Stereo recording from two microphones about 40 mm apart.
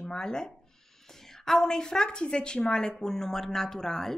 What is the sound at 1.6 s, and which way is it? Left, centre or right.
A woman's voice, centre.